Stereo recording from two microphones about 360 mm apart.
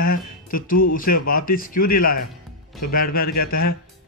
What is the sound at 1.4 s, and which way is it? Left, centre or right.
Speech, left.